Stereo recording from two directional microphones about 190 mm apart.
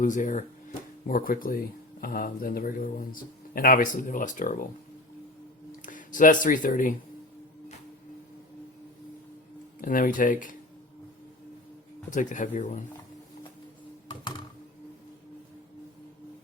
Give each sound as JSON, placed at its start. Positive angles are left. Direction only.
{"t": 0.0, "sound": "speech", "side_deg": 40}
{"t": 5.8, "sound": "speech", "side_deg": 45}
{"t": 9.8, "sound": "speech", "side_deg": 45}
{"t": 12.1, "sound": "speech", "side_deg": 40}
{"t": 14.1, "sound": "computer keyboard", "side_deg": 25}